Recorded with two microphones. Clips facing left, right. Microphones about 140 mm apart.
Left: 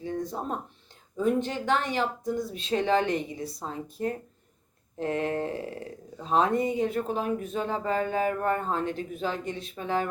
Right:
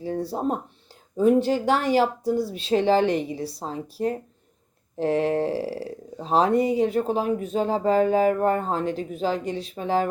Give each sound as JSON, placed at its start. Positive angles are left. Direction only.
{"t": 0.0, "sound": "speech", "side_deg": -35}